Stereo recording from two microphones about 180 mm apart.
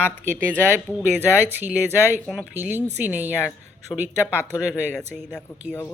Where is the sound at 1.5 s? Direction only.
10° right (ahead or behind).